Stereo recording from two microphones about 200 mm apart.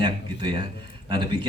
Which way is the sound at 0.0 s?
25° right (ahead or behind).